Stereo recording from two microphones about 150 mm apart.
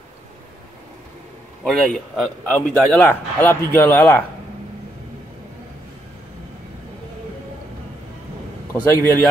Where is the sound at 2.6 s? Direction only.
15° left (ahead or behind).